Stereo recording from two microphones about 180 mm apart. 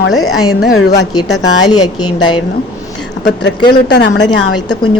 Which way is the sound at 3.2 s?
75° left (ahead or behind).